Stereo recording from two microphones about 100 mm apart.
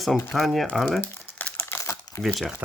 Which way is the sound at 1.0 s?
20° left (ahead or behind).